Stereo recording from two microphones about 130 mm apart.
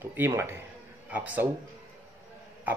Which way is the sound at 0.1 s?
20° right (ahead or behind).